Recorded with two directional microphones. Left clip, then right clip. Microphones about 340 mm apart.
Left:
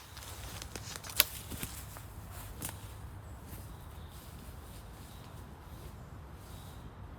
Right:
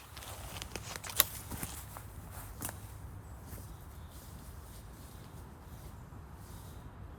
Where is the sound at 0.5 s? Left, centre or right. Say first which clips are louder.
Right 2 dB; right.